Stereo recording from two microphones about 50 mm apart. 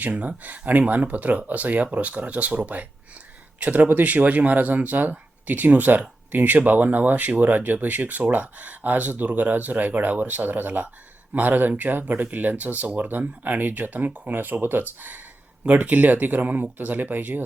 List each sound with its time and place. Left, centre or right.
0.0 s speech: right